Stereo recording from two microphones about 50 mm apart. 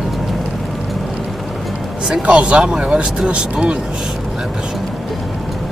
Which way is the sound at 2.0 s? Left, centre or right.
Right.